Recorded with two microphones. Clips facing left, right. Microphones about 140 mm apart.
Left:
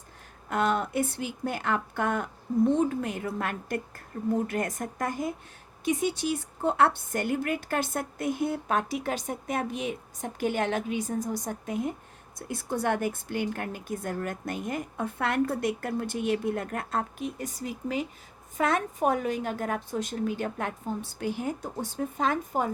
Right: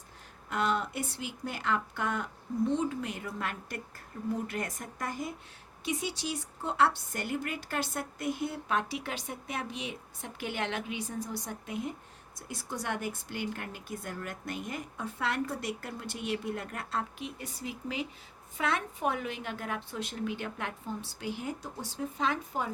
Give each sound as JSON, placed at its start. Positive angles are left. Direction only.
{"t": 0.5, "sound": "a woman's voice", "side_deg": 50}